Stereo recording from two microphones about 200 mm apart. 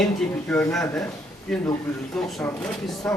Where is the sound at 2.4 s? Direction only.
5° left (ahead or behind).